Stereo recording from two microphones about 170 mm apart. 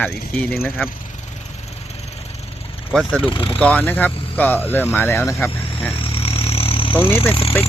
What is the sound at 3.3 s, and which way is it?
Speech, 30° left (ahead or behind).